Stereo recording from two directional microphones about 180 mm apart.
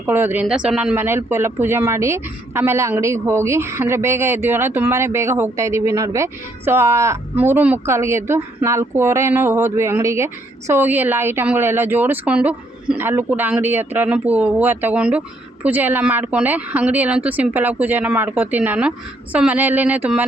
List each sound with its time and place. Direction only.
0.0 s speech: 10° right (ahead or behind)